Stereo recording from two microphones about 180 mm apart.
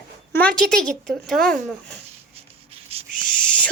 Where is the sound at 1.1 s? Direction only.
Centre (ahead or behind).